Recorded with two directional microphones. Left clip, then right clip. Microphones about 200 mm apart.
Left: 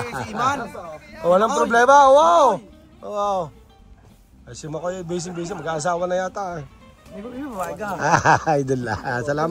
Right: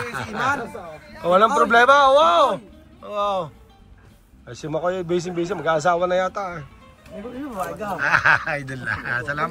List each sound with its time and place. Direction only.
0.0 s a sound: 25° left (ahead or behind)
0.5 s speech: centre (ahead or behind)
1.2 s a man's voice: 20° left (ahead or behind)
4.5 s a man's voice: 10° left (ahead or behind)
7.1 s speech: centre (ahead or behind)
8.0 s speech: 40° left (ahead or behind)